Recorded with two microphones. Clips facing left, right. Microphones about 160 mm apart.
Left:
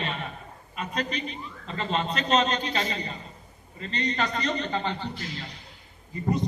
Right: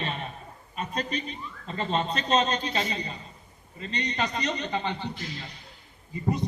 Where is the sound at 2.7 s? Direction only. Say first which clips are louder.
Left 1 dB; 25° right (ahead or behind).